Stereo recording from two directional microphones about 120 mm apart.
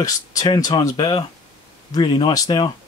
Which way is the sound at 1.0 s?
40° left (ahead or behind).